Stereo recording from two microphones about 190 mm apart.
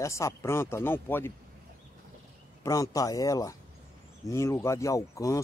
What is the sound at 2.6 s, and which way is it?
Speech, 15° left (ahead or behind).